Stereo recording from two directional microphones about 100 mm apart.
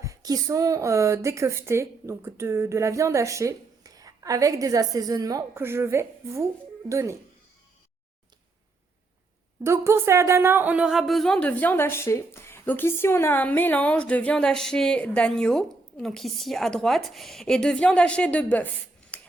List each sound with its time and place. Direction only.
0.0 s a woman's voice: 35° right (ahead or behind)
5.5 s a woman's voice: 25° right (ahead or behind)
9.6 s a woman's voice: 25° right (ahead or behind); by 18.7 s 15° left (ahead or behind)
19.1 s a sound: 15° left (ahead or behind)